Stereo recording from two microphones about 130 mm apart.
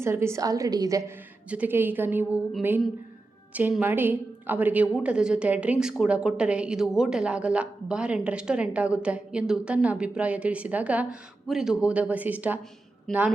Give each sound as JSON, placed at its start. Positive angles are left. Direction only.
{"t": 0.0, "sound": "a woman's voice", "side_deg": -20}
{"t": 1.5, "sound": "a woman's voice", "side_deg": -10}
{"t": 13.1, "sound": "a woman's voice", "side_deg": 5}